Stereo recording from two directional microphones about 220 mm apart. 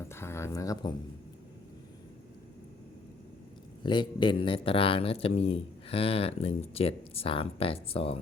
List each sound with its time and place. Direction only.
0.1 s speech: 10° left (ahead or behind)
3.8 s speech: 20° left (ahead or behind)